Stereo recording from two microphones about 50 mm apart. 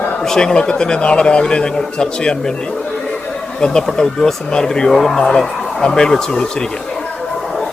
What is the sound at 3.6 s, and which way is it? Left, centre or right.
Speech, centre.